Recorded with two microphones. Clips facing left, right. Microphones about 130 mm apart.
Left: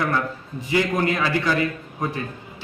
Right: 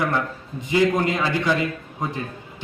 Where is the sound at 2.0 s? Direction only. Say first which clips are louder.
Left 1 dB; 20° right (ahead or behind).